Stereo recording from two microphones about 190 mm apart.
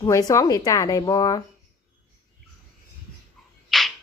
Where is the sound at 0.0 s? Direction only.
20° left (ahead or behind).